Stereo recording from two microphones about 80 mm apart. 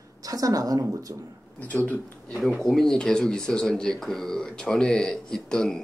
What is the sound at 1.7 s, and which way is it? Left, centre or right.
Speech, centre.